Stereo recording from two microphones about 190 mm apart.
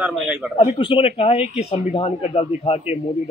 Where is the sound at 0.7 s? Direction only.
30° left (ahead or behind).